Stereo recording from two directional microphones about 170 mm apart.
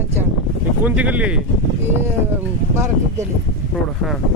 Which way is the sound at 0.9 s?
10° right (ahead or behind).